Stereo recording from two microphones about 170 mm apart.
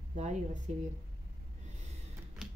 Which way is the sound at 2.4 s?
5° right (ahead or behind).